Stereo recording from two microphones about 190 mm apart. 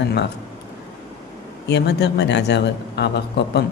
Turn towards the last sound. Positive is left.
turn(degrees=65)  # may be behind; listen again after turning